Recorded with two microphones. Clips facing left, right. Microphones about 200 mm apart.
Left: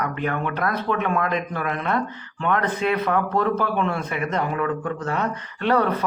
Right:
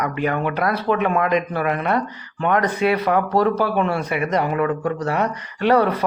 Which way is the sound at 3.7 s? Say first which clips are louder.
Right 4 dB; 10° right (ahead or behind).